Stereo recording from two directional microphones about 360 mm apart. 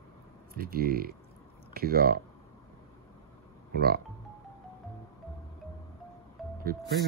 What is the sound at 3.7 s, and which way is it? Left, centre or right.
Speech, right.